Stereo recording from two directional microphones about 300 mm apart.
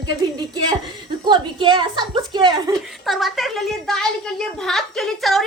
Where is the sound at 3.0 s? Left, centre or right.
Centre.